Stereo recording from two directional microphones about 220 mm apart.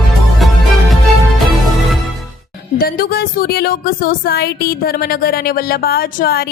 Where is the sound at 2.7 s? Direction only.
40° left (ahead or behind).